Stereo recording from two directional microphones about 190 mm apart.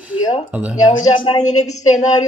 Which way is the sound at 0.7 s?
25° left (ahead or behind).